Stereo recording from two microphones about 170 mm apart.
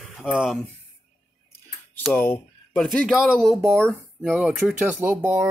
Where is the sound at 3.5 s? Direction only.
15° right (ahead or behind).